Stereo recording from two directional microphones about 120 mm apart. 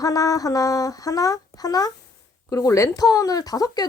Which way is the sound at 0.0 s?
30° left (ahead or behind).